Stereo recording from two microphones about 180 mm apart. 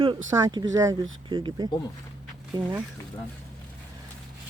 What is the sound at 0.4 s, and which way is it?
Speech, 20° right (ahead or behind).